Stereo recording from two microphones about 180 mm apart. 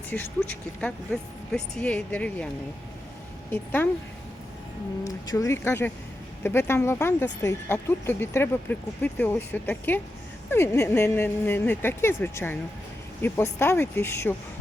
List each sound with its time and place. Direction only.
0.1 s speech: 10° left (ahead or behind)
3.5 s speech: 10° left (ahead or behind)
5.0 s speech: 20° left (ahead or behind)